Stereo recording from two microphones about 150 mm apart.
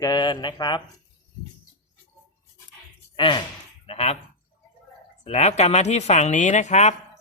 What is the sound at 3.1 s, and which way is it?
Speech, 30° left (ahead or behind).